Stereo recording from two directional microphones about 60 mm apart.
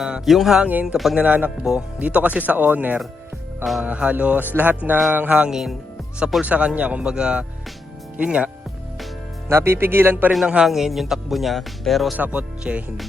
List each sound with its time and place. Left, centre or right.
0.0 s speech: centre
0.6 s speech: right
3.6 s speech: centre
3.8 s speech: right
5.5 s speech: centre
6.4 s speech: right
9.5 s speech: right
10.4 s speech: centre
10.7 s speech: centre
12.1 s speech: right